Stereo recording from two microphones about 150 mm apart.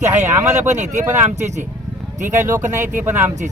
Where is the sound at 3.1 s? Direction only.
15° right (ahead or behind).